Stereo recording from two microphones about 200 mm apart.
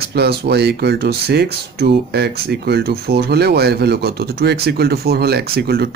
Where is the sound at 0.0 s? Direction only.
55° right (ahead or behind).